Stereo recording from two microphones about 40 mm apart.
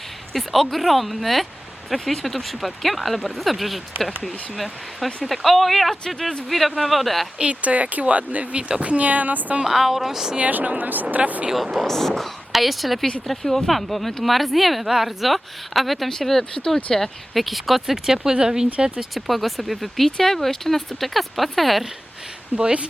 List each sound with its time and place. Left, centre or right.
0.3 s speech: centre
7.3 s speech: right
9.6 s speech: centre
10.5 s speech: right
11.9 s speech: centre
12.5 s speech: centre
19.1 s speech: centre
20.1 s speech: centre
22.5 s speech: right